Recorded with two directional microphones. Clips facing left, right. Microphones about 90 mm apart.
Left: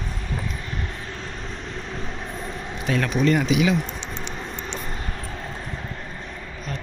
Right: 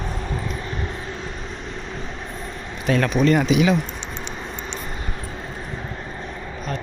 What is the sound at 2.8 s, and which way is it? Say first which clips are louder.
Speech: right 3 dB; 50° right (ahead or behind).